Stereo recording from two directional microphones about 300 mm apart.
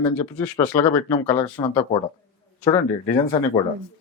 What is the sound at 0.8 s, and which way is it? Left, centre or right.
Speech, centre.